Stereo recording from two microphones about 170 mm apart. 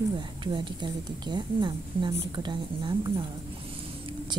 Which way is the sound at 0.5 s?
25° right (ahead or behind).